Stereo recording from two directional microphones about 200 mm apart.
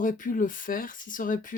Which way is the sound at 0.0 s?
40° left (ahead or behind).